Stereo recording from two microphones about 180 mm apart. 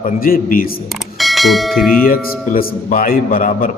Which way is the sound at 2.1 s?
50° left (ahead or behind).